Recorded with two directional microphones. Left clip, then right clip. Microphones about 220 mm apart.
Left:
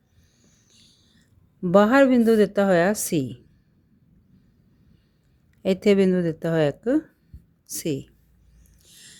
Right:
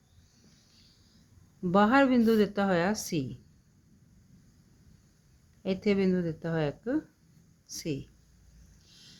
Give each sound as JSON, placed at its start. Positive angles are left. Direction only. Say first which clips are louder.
{"t": 1.6, "sound": "speech", "louder": "left 7 dB", "side_deg": 30}
{"t": 5.6, "sound": "speech", "louder": "left 9 dB", "side_deg": 35}
{"t": 8.8, "sound": "a sound", "louder": "left 6 dB", "side_deg": 35}